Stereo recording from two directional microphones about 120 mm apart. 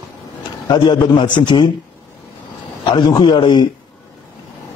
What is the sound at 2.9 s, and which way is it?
Speech, 40° left (ahead or behind).